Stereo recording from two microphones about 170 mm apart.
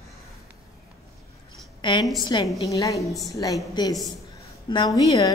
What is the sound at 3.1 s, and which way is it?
Speech, centre (ahead or behind).